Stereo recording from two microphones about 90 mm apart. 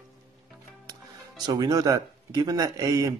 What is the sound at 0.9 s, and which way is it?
Speech, 50° right (ahead or behind).